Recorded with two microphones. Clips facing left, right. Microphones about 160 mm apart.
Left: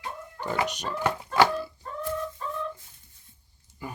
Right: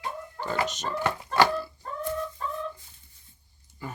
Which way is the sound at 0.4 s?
15° left (ahead or behind).